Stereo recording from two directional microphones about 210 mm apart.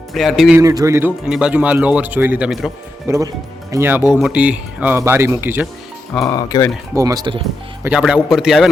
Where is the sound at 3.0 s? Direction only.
15° right (ahead or behind).